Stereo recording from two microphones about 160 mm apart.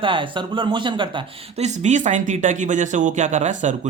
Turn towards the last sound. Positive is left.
turn(degrees=-50)  # may be behind; listen again after turning